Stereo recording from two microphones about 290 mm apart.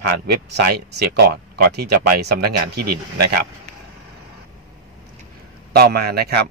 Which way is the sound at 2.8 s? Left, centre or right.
Right.